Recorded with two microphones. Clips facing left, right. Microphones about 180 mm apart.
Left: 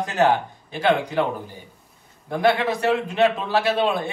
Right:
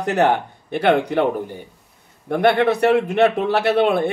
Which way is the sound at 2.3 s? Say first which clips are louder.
Right 4 dB; 60° right (ahead or behind).